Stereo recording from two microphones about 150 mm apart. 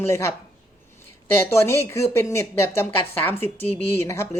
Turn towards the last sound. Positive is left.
turn(degrees=20)  # may be behind; listen again after turning